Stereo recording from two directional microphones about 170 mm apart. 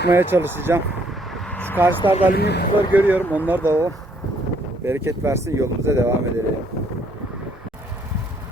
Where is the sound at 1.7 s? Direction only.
10° right (ahead or behind).